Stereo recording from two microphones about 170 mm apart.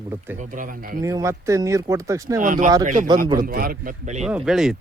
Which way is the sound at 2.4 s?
50° right (ahead or behind).